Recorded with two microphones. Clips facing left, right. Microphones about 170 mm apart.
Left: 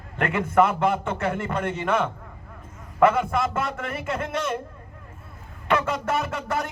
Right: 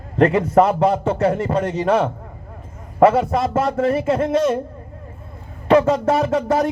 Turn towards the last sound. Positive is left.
turn(degrees=-35)  # may be behind; listen again after turning